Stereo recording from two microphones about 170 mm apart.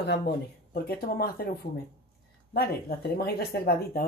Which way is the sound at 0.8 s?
65° left (ahead or behind).